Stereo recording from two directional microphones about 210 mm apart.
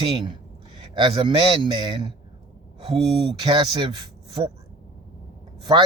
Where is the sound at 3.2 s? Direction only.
20° right (ahead or behind).